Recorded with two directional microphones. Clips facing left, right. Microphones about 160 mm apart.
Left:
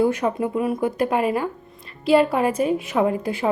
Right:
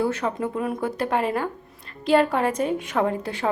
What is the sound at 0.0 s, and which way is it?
A woman's voice, 15° left (ahead or behind).